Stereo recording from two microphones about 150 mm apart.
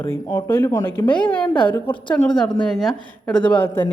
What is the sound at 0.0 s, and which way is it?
A woman's voice, 15° left (ahead or behind).